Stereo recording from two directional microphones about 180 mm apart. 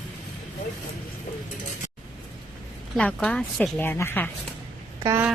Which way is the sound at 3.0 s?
5° left (ahead or behind).